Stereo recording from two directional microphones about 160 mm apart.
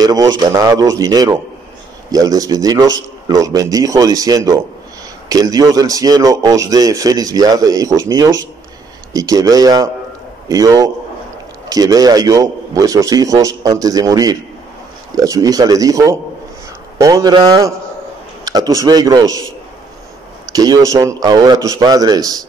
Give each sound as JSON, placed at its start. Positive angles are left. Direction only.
{"t": 0.0, "sound": "speech", "side_deg": -25}
{"t": 20.5, "sound": "speech", "side_deg": -20}